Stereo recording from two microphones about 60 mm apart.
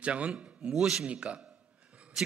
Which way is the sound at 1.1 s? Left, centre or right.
Right.